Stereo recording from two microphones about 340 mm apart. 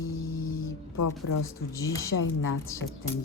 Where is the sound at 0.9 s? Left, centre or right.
Left.